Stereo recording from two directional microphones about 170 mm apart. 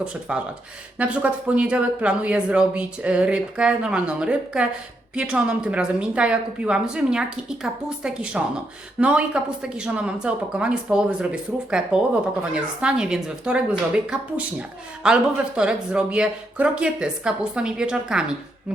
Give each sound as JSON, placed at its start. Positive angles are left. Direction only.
{"t": 0.0, "sound": "speech", "side_deg": -5}